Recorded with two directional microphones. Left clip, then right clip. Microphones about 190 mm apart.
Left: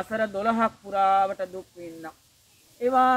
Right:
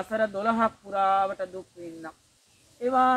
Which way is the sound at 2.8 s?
40° left (ahead or behind).